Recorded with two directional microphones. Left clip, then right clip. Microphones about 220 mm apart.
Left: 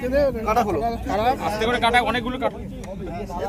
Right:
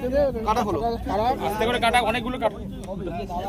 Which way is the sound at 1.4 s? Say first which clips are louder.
Left 2 dB; 25° right (ahead or behind).